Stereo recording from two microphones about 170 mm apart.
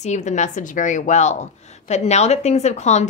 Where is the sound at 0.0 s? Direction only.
45° left (ahead or behind).